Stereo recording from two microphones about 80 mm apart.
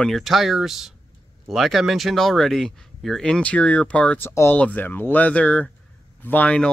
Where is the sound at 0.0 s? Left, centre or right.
Centre.